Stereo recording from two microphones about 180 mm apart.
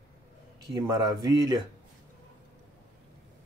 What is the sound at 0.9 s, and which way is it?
Speech, 20° right (ahead or behind).